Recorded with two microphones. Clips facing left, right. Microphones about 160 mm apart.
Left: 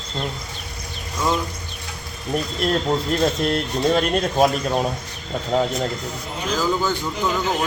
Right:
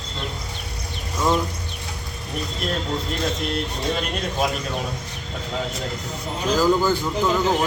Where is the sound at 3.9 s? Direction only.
50° left (ahead or behind).